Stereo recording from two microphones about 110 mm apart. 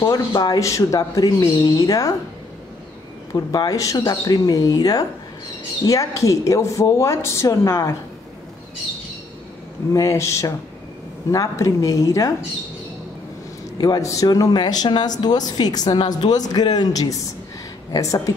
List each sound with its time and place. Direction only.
0.3 s speech: 35° left (ahead or behind)
3.5 s a woman's voice: 35° left (ahead or behind)
9.9 s a woman's voice: 30° left (ahead or behind)
13.7 s speech: 35° left (ahead or behind)